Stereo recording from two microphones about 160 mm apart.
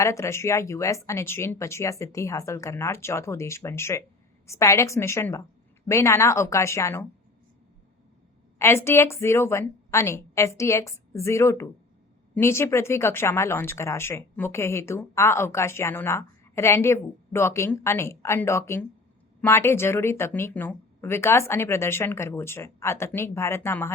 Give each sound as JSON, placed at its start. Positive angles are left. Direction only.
{"t": 0.0, "sound": "speech", "side_deg": 20}
{"t": 8.5, "sound": "speech", "side_deg": 15}